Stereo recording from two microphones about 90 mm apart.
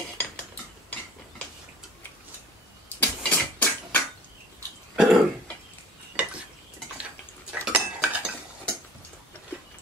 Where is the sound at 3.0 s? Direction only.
20° left (ahead or behind).